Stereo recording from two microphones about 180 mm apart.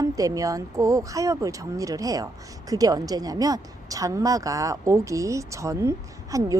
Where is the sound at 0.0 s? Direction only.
20° right (ahead or behind).